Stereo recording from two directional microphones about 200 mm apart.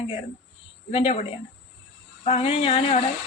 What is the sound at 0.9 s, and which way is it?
A woman's voice, 30° left (ahead or behind).